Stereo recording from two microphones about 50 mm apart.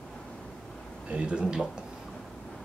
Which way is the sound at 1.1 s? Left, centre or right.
Right.